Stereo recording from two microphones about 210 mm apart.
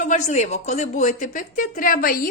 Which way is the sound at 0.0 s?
35° left (ahead or behind).